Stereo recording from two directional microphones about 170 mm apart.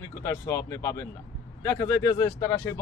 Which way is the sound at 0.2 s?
15° left (ahead or behind).